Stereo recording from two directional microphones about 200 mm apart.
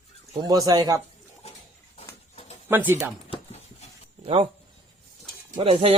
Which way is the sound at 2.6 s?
10° right (ahead or behind).